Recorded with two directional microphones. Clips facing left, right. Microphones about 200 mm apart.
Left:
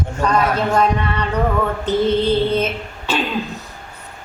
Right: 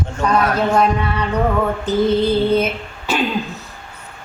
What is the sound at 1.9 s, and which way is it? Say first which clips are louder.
Speech: even; 10° right (ahead or behind).